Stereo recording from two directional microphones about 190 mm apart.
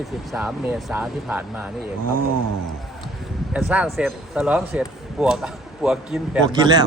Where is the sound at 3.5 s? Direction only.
10° right (ahead or behind).